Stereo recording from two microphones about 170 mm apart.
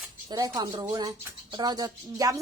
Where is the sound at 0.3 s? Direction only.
20° right (ahead or behind).